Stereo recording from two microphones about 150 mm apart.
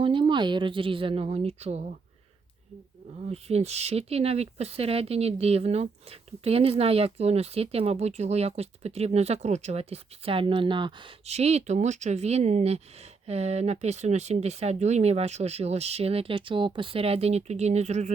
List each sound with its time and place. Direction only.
0.0 s a woman's voice: 35° right (ahead or behind)
3.2 s speech: 45° right (ahead or behind)
11.3 s speech: 45° right (ahead or behind)